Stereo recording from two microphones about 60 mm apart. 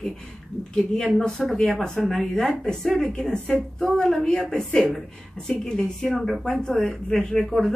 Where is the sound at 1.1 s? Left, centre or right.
Centre.